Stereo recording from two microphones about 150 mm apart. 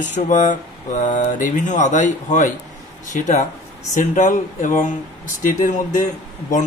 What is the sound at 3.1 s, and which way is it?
Speech, 50° left (ahead or behind).